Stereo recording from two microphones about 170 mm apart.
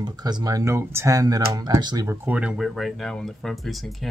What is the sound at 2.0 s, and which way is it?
Speech, 10° right (ahead or behind).